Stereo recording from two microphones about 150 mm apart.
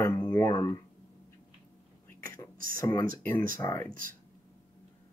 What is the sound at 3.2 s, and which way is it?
Speech, 10° left (ahead or behind).